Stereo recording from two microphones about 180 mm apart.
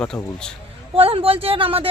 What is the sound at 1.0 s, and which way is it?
Speech, 30° right (ahead or behind).